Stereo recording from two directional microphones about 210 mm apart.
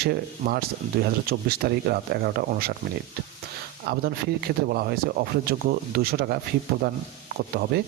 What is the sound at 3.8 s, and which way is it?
Speech, 45° right (ahead or behind).